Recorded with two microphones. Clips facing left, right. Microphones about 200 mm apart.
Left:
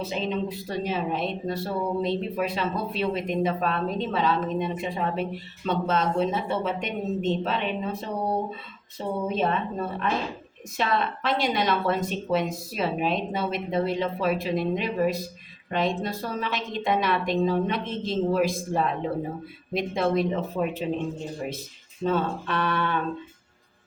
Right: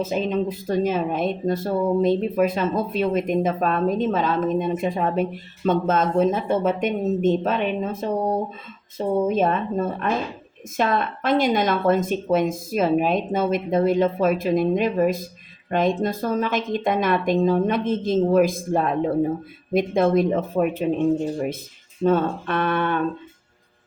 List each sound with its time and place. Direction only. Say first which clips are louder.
0.0 s speech: right 5 dB; 45° right (ahead or behind)
9.0 s speech: right 6 dB; 45° right (ahead or behind)
22.0 s speech: right 6 dB; 50° right (ahead or behind)